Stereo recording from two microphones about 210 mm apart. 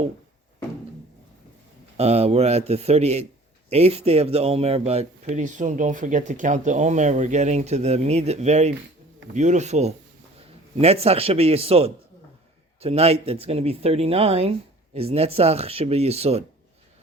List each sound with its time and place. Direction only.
2.0 s speech: 30° right (ahead or behind)